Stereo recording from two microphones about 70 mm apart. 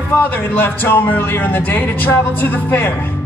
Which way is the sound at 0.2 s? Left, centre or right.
Left.